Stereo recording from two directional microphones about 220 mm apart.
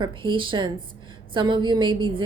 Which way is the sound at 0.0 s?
20° right (ahead or behind).